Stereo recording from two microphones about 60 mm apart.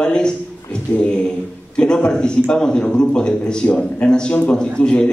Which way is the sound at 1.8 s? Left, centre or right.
Centre.